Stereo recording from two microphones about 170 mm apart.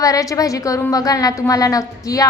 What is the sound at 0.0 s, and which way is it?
A woman's voice, 20° left (ahead or behind).